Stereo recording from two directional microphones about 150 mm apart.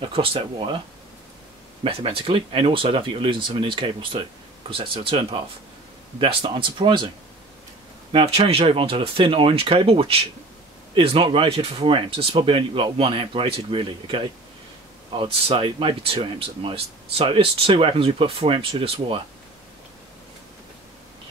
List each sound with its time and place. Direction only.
0.0 s speech: 35° right (ahead or behind)
1.8 s speech: 40° right (ahead or behind)
8.1 s speech: 35° right (ahead or behind)